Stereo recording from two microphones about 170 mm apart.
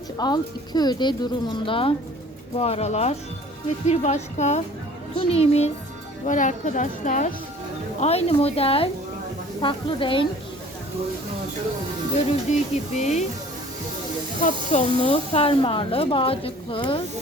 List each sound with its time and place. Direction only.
0.2 s speech: 25° left (ahead or behind)
6.2 s speech: 50° left (ahead or behind)
8.0 s speech: 35° left (ahead or behind)
12.5 s speech: 40° left (ahead or behind)
14.4 s speech: 45° left (ahead or behind)